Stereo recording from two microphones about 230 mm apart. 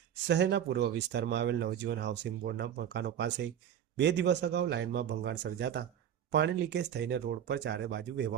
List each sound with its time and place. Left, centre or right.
0.3 s speech: right